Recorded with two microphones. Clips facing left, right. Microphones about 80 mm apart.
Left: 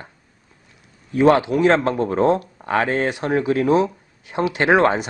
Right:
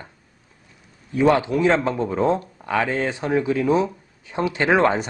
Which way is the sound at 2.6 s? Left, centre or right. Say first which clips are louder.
Left 2 dB; left.